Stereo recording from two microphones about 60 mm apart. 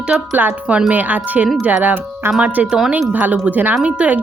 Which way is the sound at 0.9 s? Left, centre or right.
Right.